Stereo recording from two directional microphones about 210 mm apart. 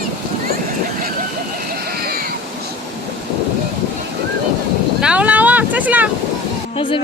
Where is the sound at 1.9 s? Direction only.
45° right (ahead or behind).